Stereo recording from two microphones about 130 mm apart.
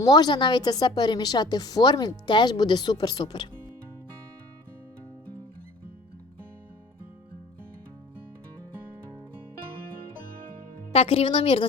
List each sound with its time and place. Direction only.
0.0 s a woman's voice: 30° left (ahead or behind)
10.9 s a woman's voice: 45° left (ahead or behind)